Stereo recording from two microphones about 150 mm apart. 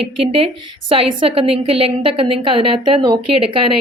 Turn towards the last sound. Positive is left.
turn(degrees=-30)  # may be behind; listen again after turning